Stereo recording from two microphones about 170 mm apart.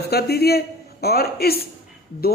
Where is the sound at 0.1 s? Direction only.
70° left (ahead or behind).